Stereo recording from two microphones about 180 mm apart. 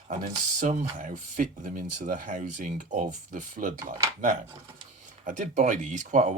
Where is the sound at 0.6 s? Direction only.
45° right (ahead or behind).